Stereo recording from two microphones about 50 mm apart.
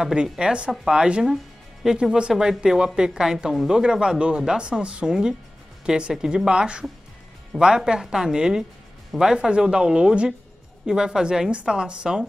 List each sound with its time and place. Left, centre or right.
0.0 s speech: centre
1.2 s music: centre
2.0 s speech: centre